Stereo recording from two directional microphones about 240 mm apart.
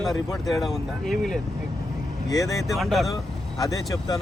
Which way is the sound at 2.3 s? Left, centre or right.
Centre.